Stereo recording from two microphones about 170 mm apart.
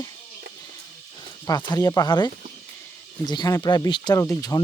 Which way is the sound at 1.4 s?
25° left (ahead or behind).